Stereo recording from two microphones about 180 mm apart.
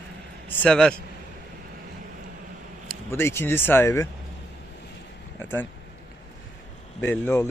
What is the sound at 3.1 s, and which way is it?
Speech, 15° left (ahead or behind).